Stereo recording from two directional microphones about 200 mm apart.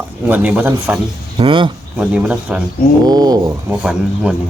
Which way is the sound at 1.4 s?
25° right (ahead or behind).